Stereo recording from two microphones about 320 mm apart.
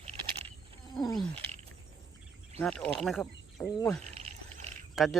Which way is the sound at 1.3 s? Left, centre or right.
Centre.